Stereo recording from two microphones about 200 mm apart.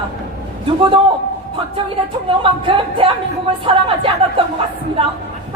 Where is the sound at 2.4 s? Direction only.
25° right (ahead or behind).